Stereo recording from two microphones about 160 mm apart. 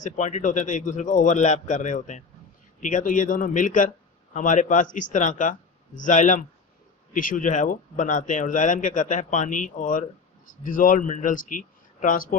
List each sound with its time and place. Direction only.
0.0 s speech: 45° left (ahead or behind)